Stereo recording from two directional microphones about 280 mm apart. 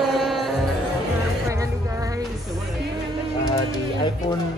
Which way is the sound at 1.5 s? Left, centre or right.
Centre.